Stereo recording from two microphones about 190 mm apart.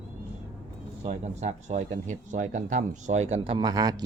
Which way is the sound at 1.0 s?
40° right (ahead or behind).